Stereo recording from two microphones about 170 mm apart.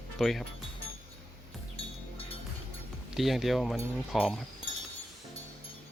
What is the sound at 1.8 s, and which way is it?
Music, 35° left (ahead or behind).